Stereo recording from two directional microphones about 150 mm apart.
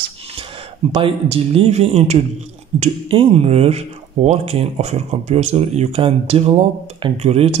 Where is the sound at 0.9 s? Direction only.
40° right (ahead or behind).